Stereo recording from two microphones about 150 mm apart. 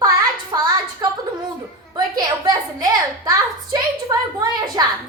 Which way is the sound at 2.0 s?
25° right (ahead or behind).